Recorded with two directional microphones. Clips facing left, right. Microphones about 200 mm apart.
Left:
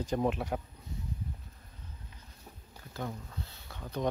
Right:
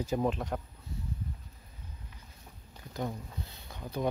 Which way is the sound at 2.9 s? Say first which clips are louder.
Right 3 dB; 15° right (ahead or behind).